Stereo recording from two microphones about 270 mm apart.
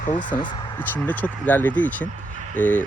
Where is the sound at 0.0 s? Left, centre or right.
Left.